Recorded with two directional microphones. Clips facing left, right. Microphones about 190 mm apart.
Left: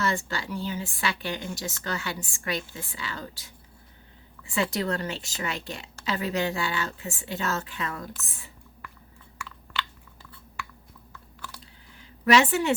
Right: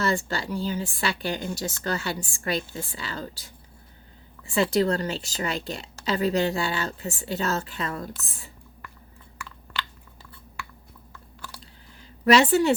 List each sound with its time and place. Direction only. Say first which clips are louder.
0.0 s a woman's voice: right 3 dB; 35° right (ahead or behind)
11.4 s chewing: even; 35° right (ahead or behind)
12.2 s a woman's voice: right 3 dB; 35° right (ahead or behind)